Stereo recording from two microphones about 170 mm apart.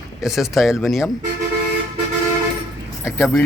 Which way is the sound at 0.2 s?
Centre (ahead or behind).